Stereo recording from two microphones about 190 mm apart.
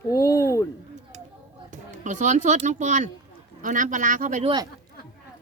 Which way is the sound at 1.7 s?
40° right (ahead or behind).